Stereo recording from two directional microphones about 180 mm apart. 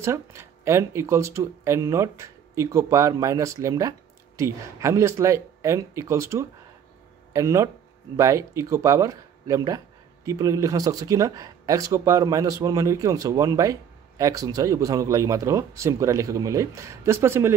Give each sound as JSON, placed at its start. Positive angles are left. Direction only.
{"t": 0.0, "sound": "speech", "side_deg": -15}